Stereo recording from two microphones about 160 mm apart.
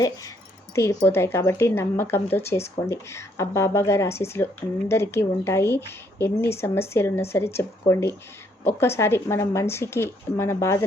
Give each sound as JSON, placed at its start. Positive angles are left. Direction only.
{"t": 0.8, "sound": "speech", "side_deg": 15}